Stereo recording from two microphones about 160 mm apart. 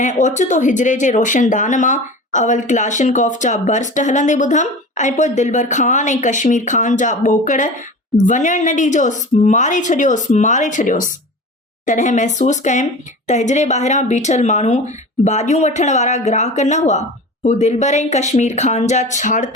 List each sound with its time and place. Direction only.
0.0 s speech: 50° left (ahead or behind)